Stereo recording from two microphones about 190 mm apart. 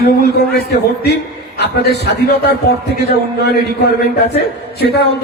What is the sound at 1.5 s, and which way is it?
Speech, 60° left (ahead or behind).